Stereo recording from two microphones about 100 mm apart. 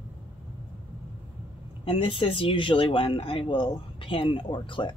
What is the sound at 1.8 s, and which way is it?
Speech, 60° left (ahead or behind).